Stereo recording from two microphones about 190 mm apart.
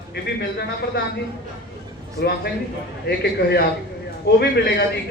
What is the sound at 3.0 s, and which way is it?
A man's voice, 60° left (ahead or behind).